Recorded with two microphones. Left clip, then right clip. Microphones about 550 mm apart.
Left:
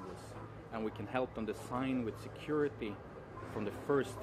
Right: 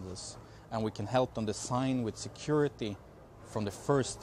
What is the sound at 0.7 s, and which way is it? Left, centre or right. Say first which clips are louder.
Speech: right 6 dB; right.